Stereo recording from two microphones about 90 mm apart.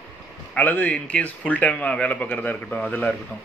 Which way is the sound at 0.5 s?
20° left (ahead or behind).